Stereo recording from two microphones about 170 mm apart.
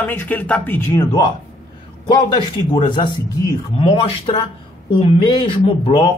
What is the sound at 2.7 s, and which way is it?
Speech, 30° left (ahead or behind).